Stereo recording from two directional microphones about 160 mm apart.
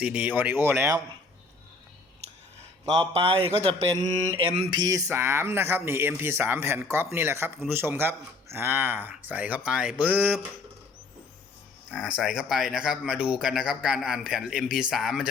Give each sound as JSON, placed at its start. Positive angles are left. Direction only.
{"t": 0.0, "sound": "speech", "side_deg": -10}
{"t": 2.8, "sound": "speech", "side_deg": -35}
{"t": 4.8, "sound": "speech", "side_deg": -20}
{"t": 11.9, "sound": "speech", "side_deg": -5}